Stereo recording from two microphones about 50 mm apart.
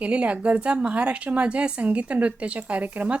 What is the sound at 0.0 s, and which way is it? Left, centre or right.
A woman's voice, right.